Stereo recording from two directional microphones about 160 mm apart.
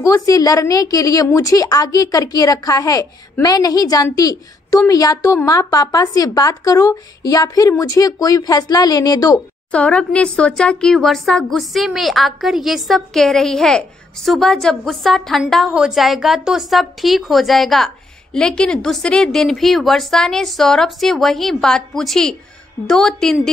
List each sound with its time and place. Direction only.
0.0 s a woman's voice: 20° left (ahead or behind)
9.7 s speech: 5° left (ahead or behind)